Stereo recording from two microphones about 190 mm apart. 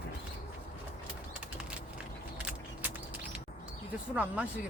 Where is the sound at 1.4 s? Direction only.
5° right (ahead or behind).